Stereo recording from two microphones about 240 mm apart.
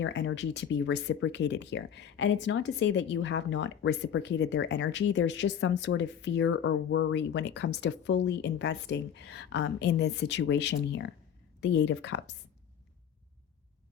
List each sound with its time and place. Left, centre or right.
0.0 s speech: left